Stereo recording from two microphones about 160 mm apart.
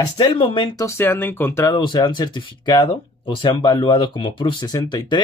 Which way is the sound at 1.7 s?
30° left (ahead or behind).